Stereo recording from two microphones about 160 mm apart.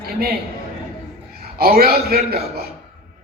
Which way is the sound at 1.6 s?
70° right (ahead or behind).